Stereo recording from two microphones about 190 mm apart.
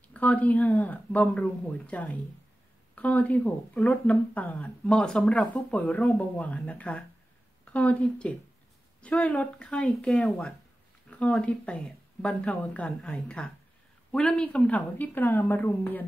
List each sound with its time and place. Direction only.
0.1 s speech: 10° left (ahead or behind)